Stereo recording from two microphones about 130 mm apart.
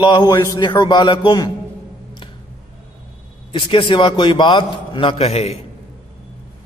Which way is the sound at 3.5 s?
40° left (ahead or behind).